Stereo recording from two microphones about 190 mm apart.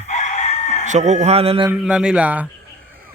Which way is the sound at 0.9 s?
40° right (ahead or behind).